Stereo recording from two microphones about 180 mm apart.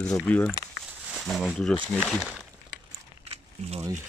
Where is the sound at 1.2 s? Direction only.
Centre (ahead or behind).